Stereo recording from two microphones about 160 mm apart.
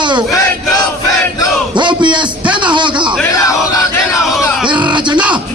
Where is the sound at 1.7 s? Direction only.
30° right (ahead or behind).